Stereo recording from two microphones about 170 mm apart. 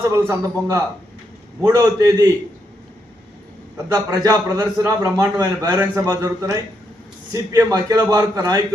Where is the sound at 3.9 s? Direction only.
15° right (ahead or behind).